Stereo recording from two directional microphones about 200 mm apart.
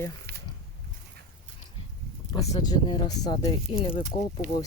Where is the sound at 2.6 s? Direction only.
20° left (ahead or behind).